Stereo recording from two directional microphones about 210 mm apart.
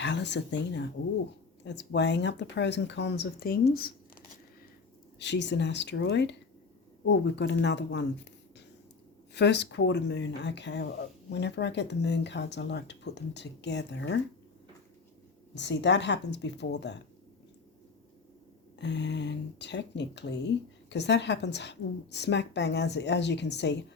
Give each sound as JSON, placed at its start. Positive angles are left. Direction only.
{"t": 0.0, "sound": "speech", "side_deg": 55}
{"t": 3.8, "sound": "a sound", "side_deg": 45}
{"t": 5.2, "sound": "speech", "side_deg": 55}
{"t": 15.5, "sound": "speech", "side_deg": 55}
{"t": 18.8, "sound": "speech", "side_deg": 55}